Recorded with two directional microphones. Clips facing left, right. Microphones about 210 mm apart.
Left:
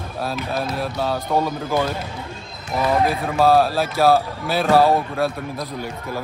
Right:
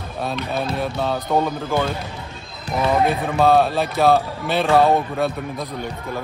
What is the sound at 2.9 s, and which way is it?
Speech, centre (ahead or behind).